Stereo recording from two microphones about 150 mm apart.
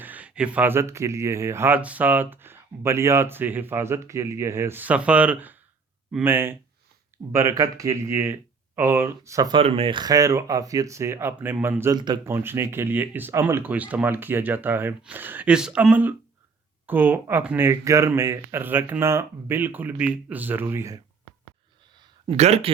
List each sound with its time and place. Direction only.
0.0 s speech: 10° right (ahead or behind)
9.6 s speech: 40° right (ahead or behind); by 11.9 s 15° right (ahead or behind)
11.9 s speech: 30° right (ahead or behind)
12.2 s speech: 15° right (ahead or behind)
22.3 s speech: 45° right (ahead or behind)